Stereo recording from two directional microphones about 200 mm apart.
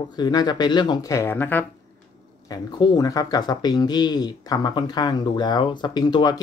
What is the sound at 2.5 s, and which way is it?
Speech, 20° left (ahead or behind).